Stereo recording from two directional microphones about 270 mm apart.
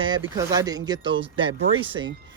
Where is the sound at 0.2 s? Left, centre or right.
Centre.